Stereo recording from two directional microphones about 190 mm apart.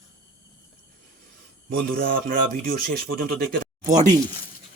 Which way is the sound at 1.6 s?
55° right (ahead or behind).